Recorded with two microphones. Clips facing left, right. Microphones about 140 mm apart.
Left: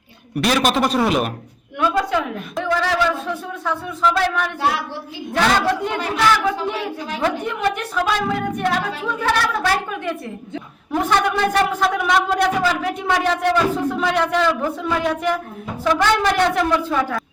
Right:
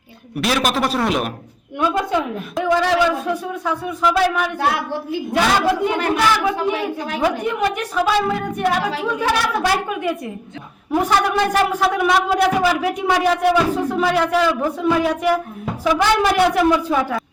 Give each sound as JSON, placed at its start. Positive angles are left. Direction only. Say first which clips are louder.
{"t": 0.3, "sound": "speech", "louder": "left 1 dB", "side_deg": 0}
{"t": 2.6, "sound": "speech", "louder": "right 3 dB", "side_deg": -15}
{"t": 4.6, "sound": "a woman's voice", "louder": "right 2 dB", "side_deg": -55}
{"t": 5.3, "sound": "speech", "louder": "even", "side_deg": -10}